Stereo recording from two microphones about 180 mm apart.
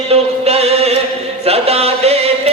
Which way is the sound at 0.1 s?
35° right (ahead or behind).